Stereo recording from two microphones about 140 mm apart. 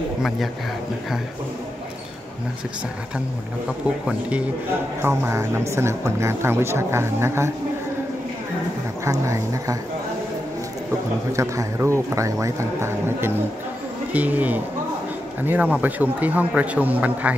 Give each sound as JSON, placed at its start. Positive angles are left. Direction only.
{"t": 5.0, "sound": "speech", "side_deg": -20}
{"t": 9.0, "sound": "speech", "side_deg": -20}
{"t": 11.3, "sound": "a man's voice", "side_deg": -20}